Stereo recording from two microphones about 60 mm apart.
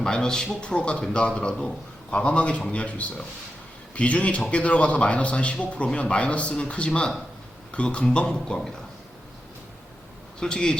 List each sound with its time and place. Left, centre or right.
0.0 s a man's voice: centre
10.4 s a man's voice: centre